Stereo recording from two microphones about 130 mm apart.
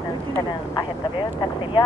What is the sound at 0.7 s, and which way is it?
Speech, 35° left (ahead or behind).